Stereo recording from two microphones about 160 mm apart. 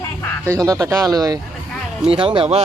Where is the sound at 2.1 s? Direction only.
35° right (ahead or behind).